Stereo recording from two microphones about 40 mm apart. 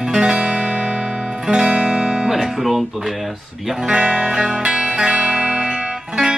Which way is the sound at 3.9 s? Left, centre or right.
Right.